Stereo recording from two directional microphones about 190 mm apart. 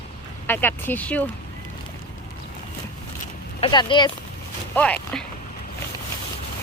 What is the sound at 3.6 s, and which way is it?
Speech, 25° left (ahead or behind).